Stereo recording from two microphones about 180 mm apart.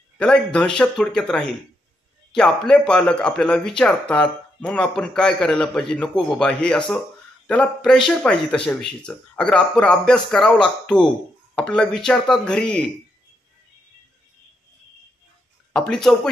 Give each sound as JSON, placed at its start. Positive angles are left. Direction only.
{"t": 0.2, "sound": "speech", "side_deg": 5}
{"t": 15.7, "sound": "speech", "side_deg": 5}